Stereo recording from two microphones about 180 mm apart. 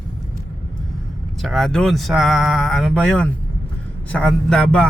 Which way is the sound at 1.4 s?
Centre (ahead or behind).